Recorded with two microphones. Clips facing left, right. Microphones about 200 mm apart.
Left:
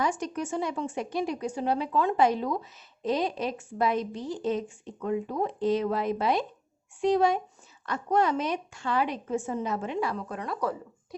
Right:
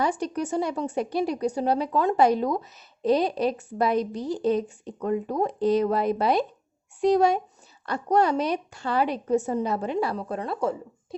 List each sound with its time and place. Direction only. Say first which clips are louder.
0.0 s speech: right 3 dB; 35° right (ahead or behind)